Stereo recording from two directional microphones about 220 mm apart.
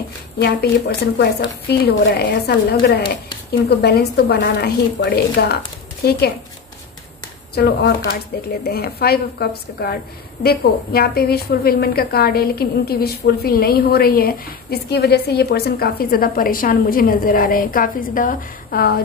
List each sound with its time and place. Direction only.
0.4 s a woman's voice: 45° left (ahead or behind)
3.6 s a woman's voice: 45° left (ahead or behind)
7.5 s a woman's voice: 45° left (ahead or behind)